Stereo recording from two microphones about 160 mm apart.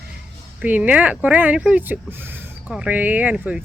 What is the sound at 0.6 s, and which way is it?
Speech, 10° right (ahead or behind).